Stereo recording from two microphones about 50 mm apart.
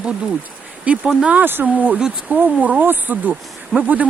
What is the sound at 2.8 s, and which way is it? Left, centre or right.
Speech, right.